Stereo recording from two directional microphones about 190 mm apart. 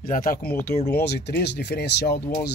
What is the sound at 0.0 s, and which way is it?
Speech, 45° left (ahead or behind).